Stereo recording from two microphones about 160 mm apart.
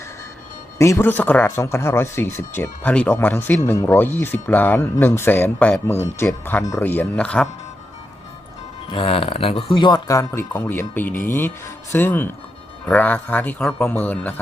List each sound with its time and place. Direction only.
0.8 s speech: 15° left (ahead or behind)
8.9 s speech: 35° left (ahead or behind); by 14.4 s 10° left (ahead or behind)